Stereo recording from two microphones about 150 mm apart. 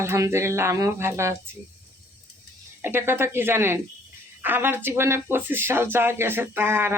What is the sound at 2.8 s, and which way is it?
Speech, 15° right (ahead or behind).